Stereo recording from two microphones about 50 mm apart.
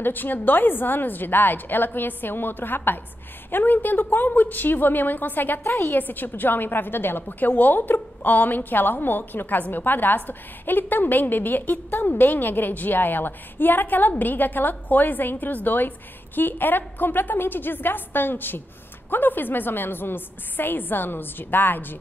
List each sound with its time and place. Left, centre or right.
0.0 s a woman's voice: left
5.6 s a woman's voice: left
5.9 s a woman's voice: left